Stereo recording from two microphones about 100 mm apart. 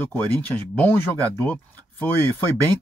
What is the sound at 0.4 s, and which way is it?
Speech, 15° left (ahead or behind).